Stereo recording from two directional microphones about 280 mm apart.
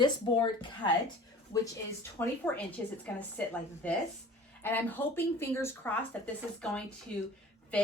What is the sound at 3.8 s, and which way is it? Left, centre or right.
A woman's voice, centre.